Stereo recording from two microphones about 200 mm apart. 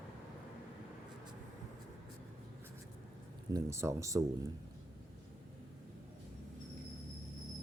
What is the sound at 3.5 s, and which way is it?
Speech, 15° right (ahead or behind).